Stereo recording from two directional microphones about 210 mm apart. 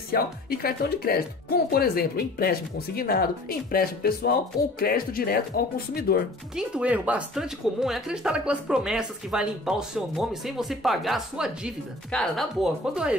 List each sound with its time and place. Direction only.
0.1 s speech: 45° left (ahead or behind)
6.5 s speech: 5° right (ahead or behind)